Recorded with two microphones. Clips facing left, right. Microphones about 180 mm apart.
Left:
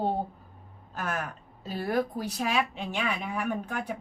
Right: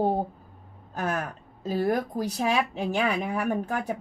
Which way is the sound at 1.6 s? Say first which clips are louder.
Right 3 dB; 40° right (ahead or behind).